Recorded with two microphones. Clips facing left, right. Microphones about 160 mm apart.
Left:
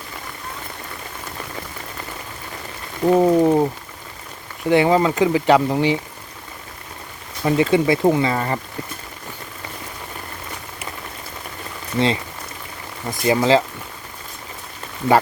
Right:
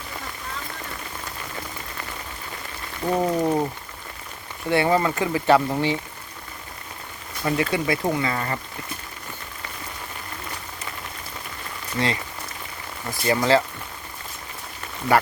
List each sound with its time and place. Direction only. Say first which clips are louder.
3.2 s speech: left 6 dB; 20° left (ahead or behind)
7.4 s speech: left 7 dB; 25° left (ahead or behind)
11.9 s speech: left 6 dB; 25° left (ahead or behind)